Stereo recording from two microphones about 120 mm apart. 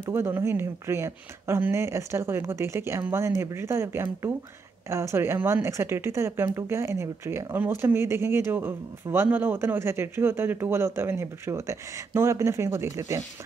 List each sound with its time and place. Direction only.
0.0 s a woman's voice: 20° right (ahead or behind)